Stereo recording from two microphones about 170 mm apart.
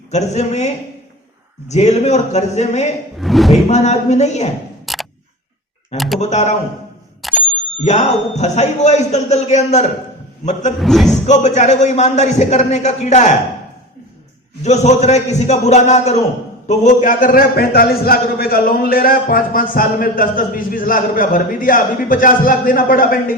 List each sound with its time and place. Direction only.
0.1 s a man's voice: 40° left (ahead or behind)
3.2 s speech: centre (ahead or behind)
3.7 s a man's voice: 40° left (ahead or behind)
4.9 s camera: centre (ahead or behind)
6.1 s a man's voice: 40° left (ahead or behind)
7.2 s bicycle bell: centre (ahead or behind)
7.9 s a man's voice: 40° left (ahead or behind)
10.8 s speech: centre (ahead or behind)
11.3 s a man's voice: 40° left (ahead or behind)
14.6 s a man's voice: 40° left (ahead or behind)